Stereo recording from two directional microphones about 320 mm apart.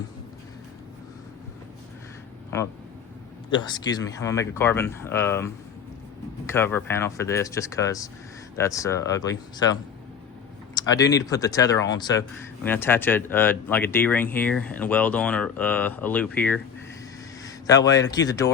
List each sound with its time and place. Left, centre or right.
3.5 s speech: centre
10.8 s a man's voice: centre